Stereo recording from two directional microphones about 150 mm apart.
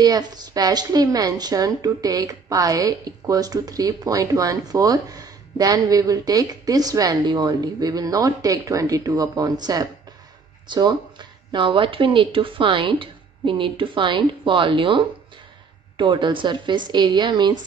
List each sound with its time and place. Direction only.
0.0 s a woman's voice: 25° right (ahead or behind)